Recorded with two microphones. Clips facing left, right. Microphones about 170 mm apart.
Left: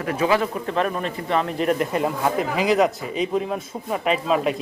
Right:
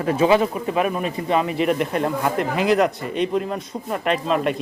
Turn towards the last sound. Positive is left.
turn(degrees=0)  # may be behind; listen again after turning